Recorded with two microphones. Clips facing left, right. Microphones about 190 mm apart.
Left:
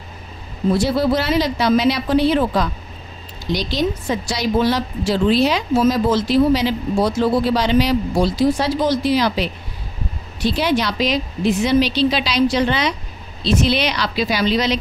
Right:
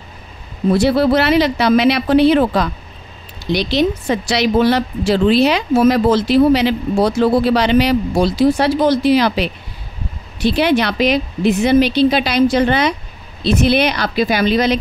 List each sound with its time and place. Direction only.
0.7 s a woman's voice: 65° right (ahead or behind)